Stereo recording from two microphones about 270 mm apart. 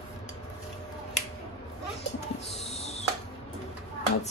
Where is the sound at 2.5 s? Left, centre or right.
Left.